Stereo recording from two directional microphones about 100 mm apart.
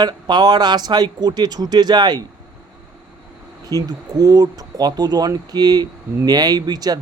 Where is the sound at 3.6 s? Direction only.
40° right (ahead or behind).